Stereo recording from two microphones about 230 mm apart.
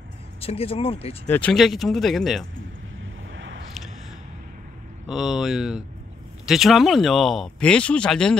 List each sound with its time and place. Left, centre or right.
0.4 s speech: left
1.3 s speech: centre
3.3 s squish: right
5.0 s speech: centre